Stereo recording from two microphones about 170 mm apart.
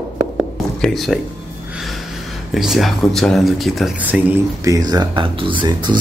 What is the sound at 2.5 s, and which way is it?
Speech, centre (ahead or behind).